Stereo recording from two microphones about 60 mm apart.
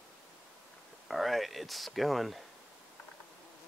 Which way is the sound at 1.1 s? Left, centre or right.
Centre.